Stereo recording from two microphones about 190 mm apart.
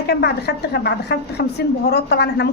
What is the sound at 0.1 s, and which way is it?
Speech, 60° left (ahead or behind).